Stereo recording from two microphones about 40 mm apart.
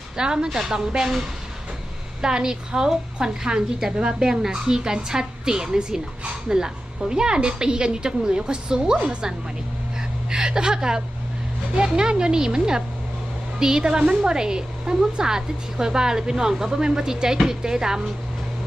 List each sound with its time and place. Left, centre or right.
0.2 s a woman's voice: centre
2.2 s a woman's voice: centre
13.9 s a woman's voice: right